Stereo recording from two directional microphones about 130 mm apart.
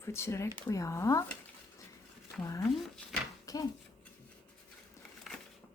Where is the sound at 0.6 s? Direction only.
25° left (ahead or behind).